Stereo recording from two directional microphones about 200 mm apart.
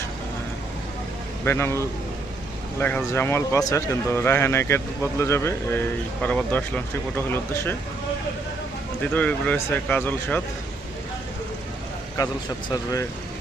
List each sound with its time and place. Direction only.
1.5 s speech: 15° left (ahead or behind)
9.1 s speech: 5° left (ahead or behind)
12.1 s speech: 15° left (ahead or behind)